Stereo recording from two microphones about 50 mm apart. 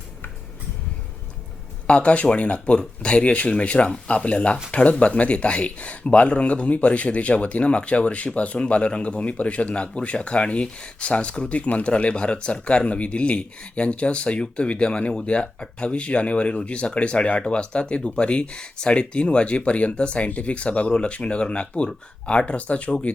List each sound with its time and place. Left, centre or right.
1.9 s speech: left